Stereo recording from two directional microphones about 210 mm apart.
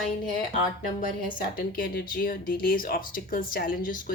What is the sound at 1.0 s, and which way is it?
Speech, 45° left (ahead or behind).